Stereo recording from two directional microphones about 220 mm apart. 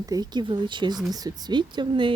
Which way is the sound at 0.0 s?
15° right (ahead or behind).